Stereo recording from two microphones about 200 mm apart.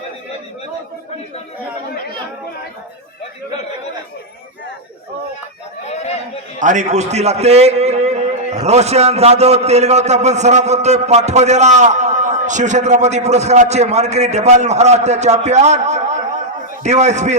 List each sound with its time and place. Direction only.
5.9 s chatter: 35° left (ahead or behind)
6.6 s a man's voice: 35° right (ahead or behind)